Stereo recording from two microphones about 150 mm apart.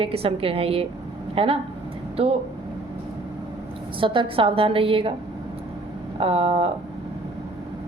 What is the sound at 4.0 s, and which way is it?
A woman's voice, 35° right (ahead or behind).